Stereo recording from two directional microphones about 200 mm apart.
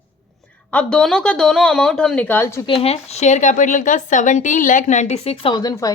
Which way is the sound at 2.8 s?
35° left (ahead or behind).